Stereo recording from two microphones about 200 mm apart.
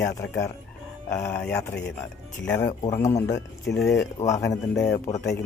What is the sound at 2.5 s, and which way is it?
Speech, 20° left (ahead or behind).